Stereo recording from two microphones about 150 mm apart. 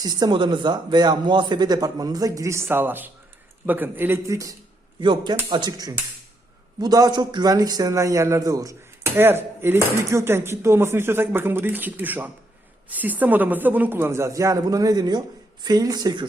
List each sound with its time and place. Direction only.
0.0 s a man's voice: 25° right (ahead or behind)